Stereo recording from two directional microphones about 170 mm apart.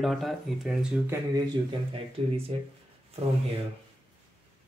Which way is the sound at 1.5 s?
35° right (ahead or behind).